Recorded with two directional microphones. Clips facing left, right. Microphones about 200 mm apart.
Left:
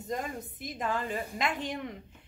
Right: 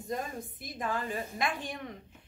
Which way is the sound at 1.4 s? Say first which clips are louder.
Left 2 dB; 20° left (ahead or behind).